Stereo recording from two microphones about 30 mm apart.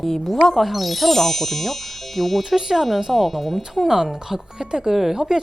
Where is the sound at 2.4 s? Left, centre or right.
Centre.